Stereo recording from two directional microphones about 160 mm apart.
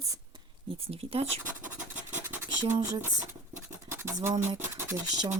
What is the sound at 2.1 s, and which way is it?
Scratch, 15° right (ahead or behind).